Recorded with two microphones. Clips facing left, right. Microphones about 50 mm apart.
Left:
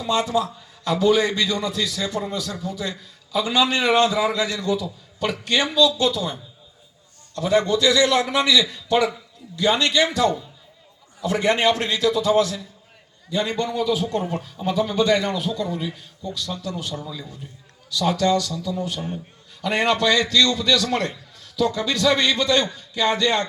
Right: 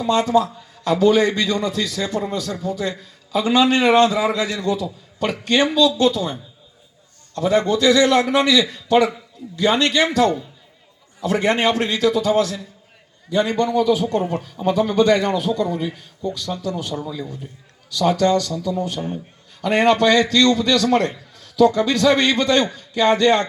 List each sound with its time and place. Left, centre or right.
0.0 s a man's voice: right
13.6 s a man's voice: right
16.5 s a man's voice: right
18.0 s a man's voice: right